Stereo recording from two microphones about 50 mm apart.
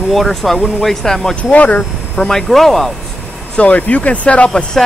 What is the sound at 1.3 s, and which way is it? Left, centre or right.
Speech, left.